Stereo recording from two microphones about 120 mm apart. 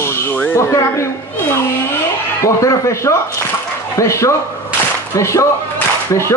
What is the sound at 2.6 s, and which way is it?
Speech, 25° left (ahead or behind).